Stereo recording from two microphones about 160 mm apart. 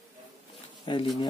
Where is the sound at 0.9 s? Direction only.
35° left (ahead or behind).